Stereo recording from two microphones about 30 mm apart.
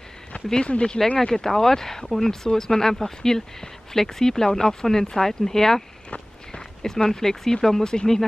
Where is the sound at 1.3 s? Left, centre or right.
Centre.